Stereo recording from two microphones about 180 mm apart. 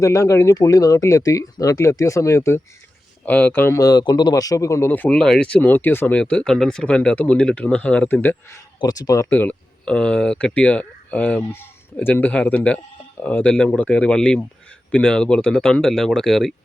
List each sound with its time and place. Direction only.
0.0 s speech: 15° left (ahead or behind)
9.3 s speech: 10° left (ahead or behind)